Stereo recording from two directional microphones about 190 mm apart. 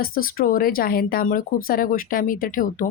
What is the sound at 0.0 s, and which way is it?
Speech, 50° left (ahead or behind).